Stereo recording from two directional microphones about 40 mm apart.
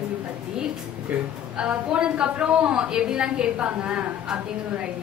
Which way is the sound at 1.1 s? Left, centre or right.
Right.